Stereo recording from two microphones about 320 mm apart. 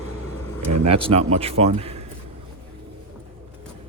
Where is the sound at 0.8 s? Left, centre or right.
Centre.